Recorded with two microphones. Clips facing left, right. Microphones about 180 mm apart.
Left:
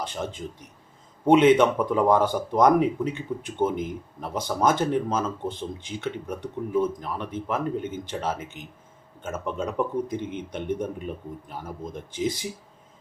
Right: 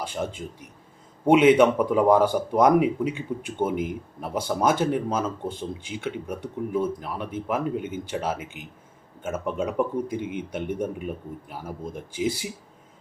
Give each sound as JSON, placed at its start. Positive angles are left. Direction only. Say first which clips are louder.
{"t": 0.0, "sound": "speech", "louder": "right 1 dB", "side_deg": -10}